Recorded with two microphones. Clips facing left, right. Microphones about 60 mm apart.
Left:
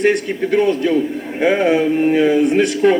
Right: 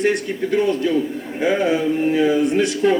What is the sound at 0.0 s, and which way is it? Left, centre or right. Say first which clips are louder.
A man's voice: left 4 dB; left.